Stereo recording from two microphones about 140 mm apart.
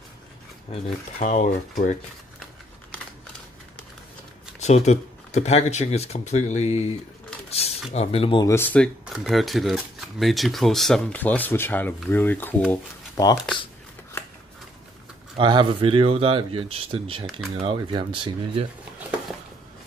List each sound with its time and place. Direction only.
1.2 s speech: 65° left (ahead or behind)
4.6 s speech: 50° left (ahead or behind)
7.4 s mechanisms: 45° left (ahead or behind)
7.9 s speech: 45° left (ahead or behind)
8.4 s speech: 20° left (ahead or behind)
9.0 s speech: centre (ahead or behind); by 13.2 s 15° left (ahead or behind)
15.3 s speech: 35° right (ahead or behind)